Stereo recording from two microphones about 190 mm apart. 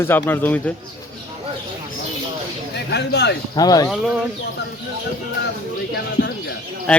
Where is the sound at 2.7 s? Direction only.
60° left (ahead or behind).